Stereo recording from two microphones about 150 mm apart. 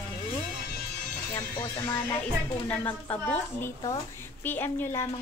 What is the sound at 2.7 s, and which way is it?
A woman's voice, 10° left (ahead or behind).